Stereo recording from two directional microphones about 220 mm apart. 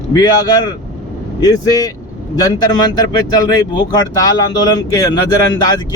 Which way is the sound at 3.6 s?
15° left (ahead or behind).